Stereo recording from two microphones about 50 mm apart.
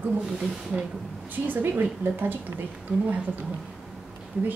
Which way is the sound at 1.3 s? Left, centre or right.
Right.